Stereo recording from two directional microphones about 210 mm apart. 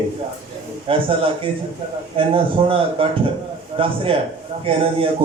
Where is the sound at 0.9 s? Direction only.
25° right (ahead or behind).